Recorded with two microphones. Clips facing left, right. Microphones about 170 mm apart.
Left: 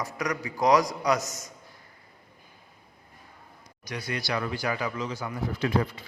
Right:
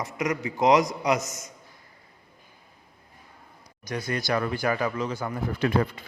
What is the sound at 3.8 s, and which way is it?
Speech, 45° right (ahead or behind).